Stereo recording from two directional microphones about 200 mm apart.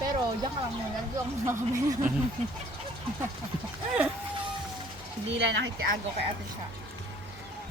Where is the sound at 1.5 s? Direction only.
15° right (ahead or behind).